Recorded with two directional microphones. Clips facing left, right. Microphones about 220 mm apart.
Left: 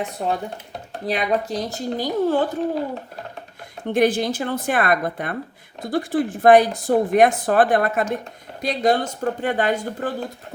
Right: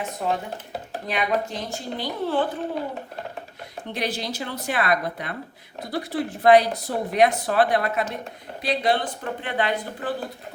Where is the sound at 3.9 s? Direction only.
50° left (ahead or behind).